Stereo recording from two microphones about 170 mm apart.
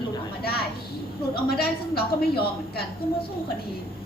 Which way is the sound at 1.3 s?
65° left (ahead or behind).